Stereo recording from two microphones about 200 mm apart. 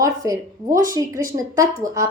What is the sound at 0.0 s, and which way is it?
Speech, 15° right (ahead or behind).